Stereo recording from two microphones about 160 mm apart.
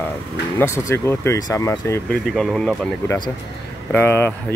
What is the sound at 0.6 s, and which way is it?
Speech, 15° left (ahead or behind).